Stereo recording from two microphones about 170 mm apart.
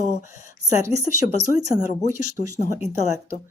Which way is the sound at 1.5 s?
20° right (ahead or behind).